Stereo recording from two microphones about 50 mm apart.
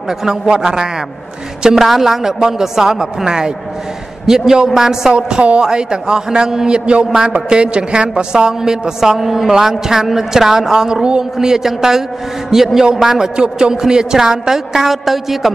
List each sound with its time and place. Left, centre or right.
0.2 s a man's voice: centre
5.1 s a man's voice: right; by 15.5 s centre